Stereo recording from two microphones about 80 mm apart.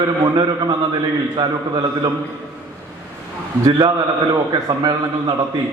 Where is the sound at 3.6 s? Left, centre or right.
Right.